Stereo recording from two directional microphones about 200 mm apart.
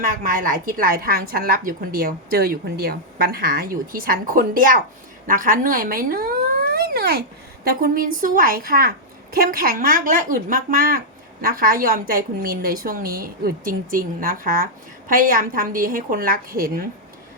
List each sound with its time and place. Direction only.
0.0 s a woman's voice: 45° right (ahead or behind)